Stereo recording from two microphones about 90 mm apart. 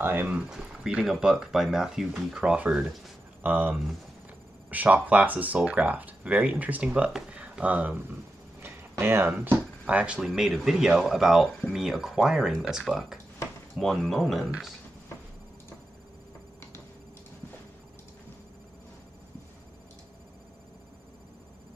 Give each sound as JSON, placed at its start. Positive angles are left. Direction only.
{"t": 0.0, "sound": "speech", "side_deg": -20}
{"t": 0.5, "sound": "speech", "side_deg": -10}
{"t": 9.0, "sound": "speech", "side_deg": -25}